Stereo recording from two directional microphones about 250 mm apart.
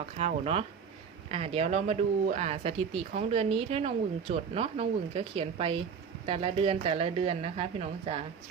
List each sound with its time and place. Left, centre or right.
0.0 s speech: right